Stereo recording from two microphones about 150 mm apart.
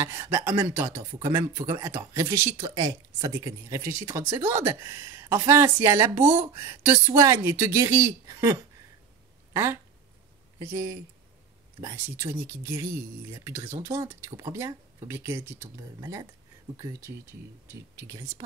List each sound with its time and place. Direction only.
0.0 s speech: 15° right (ahead or behind)